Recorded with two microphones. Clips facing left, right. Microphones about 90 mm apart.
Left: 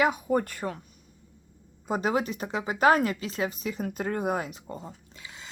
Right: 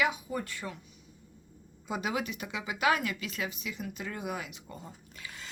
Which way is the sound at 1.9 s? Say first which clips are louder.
Left 6 dB; 40° left (ahead or behind).